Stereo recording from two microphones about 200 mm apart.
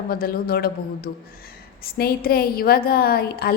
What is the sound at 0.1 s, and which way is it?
A woman's voice, 50° left (ahead or behind).